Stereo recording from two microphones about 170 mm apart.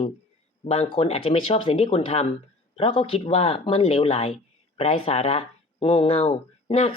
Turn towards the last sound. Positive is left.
turn(degrees=35)  # may be behind; listen again after turning